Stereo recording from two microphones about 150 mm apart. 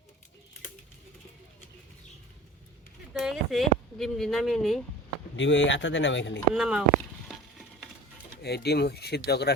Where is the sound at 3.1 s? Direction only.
Centre (ahead or behind).